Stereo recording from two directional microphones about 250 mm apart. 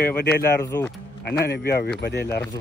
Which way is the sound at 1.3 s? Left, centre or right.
Left.